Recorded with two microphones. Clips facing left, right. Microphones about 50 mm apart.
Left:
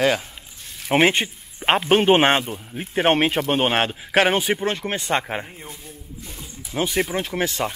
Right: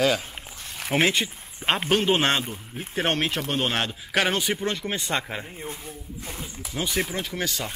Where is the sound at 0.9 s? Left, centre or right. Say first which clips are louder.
Left 5 dB; left.